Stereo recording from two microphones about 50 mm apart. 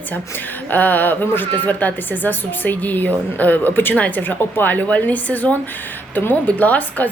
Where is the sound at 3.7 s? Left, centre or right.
Left.